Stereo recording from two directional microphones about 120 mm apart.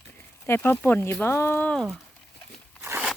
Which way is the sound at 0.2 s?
20° left (ahead or behind).